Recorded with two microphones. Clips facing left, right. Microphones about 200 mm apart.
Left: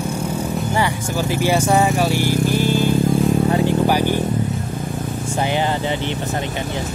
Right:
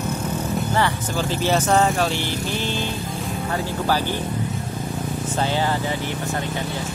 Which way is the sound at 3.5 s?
15° left (ahead or behind).